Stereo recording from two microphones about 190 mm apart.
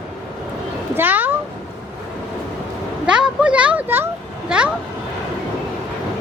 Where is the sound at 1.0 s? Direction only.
10° right (ahead or behind).